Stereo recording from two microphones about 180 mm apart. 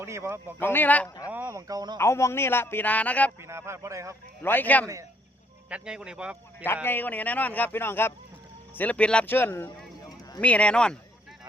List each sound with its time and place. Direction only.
0.0 s speech: 15° right (ahead or behind)
0.6 s a man's voice: 10° left (ahead or behind)
1.3 s speech: 10° right (ahead or behind)
2.0 s a man's voice: 15° left (ahead or behind)
3.4 s speech: 15° right (ahead or behind)
4.4 s a man's voice: 10° left (ahead or behind)
5.6 s speech: 5° right (ahead or behind)
6.8 s a man's voice: 10° left (ahead or behind)